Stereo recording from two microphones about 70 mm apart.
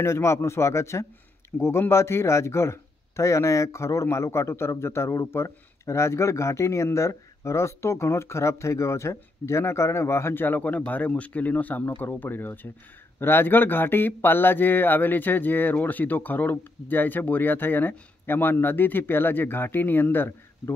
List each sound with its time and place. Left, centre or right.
0.0 s a man's voice: left